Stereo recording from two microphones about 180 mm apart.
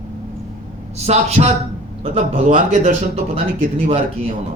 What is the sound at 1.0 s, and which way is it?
Speech, 35° right (ahead or behind).